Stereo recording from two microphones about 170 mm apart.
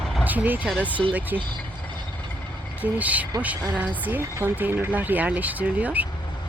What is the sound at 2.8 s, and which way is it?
Speech, 10° right (ahead or behind).